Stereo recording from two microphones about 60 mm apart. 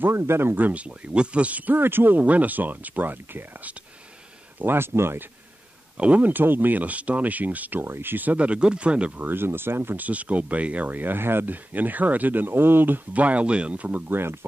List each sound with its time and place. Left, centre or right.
0.0 s speech: right
1.8 s speech: right
5.9 s speech: right
7.8 s speech: right
9.9 s speech: right